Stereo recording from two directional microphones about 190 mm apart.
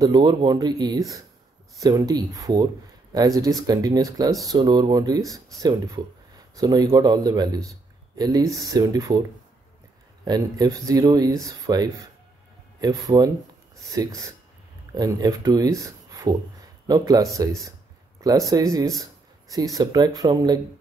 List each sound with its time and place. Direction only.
0.0 s speech: 20° right (ahead or behind)
10.2 s speech: 20° right (ahead or behind)